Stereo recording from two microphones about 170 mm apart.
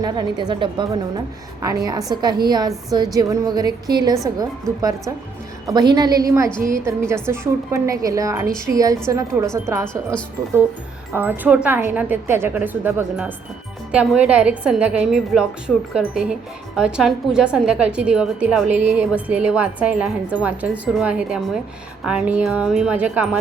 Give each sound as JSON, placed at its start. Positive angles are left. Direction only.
{"t": 0.0, "sound": "a woman's voice", "side_deg": -25}
{"t": 11.1, "sound": "a woman's voice", "side_deg": -10}